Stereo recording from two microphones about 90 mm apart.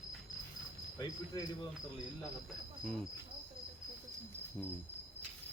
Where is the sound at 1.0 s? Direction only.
50° left (ahead or behind).